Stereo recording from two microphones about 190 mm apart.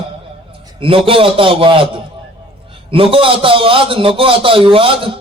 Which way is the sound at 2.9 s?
30° right (ahead or behind).